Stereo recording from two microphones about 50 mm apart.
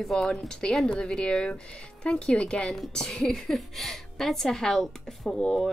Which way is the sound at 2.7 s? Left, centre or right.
Centre.